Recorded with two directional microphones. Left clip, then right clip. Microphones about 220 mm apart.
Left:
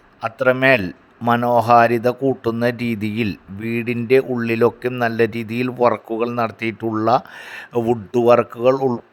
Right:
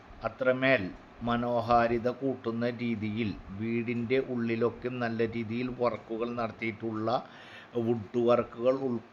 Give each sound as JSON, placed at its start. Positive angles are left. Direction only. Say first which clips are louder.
{"t": 0.2, "sound": "a man's voice", "louder": "left 11 dB", "side_deg": 50}